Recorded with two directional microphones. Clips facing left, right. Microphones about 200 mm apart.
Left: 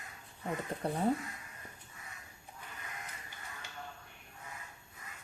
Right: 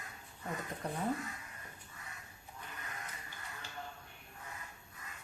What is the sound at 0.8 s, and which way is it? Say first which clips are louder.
Speech: left 5 dB; 30° left (ahead or behind).